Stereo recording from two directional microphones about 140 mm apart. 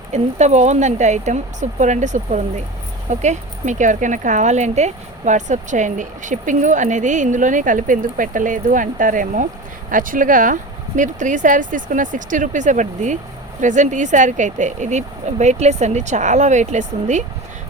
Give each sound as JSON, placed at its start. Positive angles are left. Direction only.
{"t": 0.1, "sound": "speech", "side_deg": -55}